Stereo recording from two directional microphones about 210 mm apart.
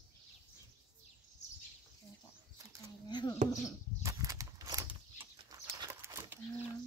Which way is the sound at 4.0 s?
15° right (ahead or behind).